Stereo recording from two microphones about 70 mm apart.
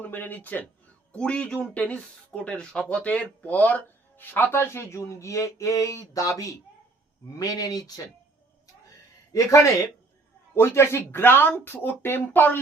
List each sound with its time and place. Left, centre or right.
0.0 s speech: left
9.3 s speech: left
10.5 s speech: left